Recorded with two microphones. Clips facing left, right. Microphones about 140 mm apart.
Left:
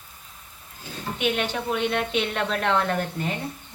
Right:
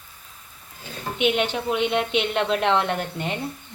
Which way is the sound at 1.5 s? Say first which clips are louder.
Right 2 dB; 15° right (ahead or behind).